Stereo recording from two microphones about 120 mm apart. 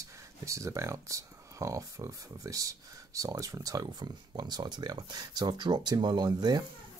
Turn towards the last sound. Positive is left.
turn(degrees=-35)  # may be behind; listen again after turning